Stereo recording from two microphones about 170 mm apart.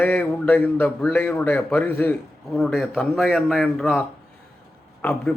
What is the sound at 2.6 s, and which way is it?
A man's voice, centre (ahead or behind).